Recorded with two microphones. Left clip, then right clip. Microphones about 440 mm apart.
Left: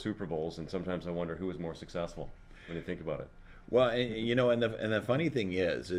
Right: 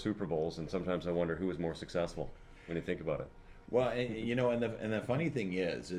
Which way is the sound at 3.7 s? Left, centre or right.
Left.